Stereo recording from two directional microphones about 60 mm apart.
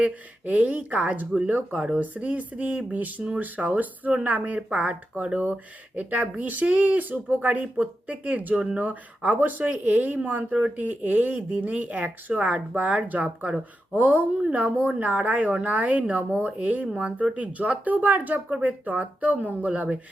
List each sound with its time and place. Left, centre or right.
0.0 s speech: right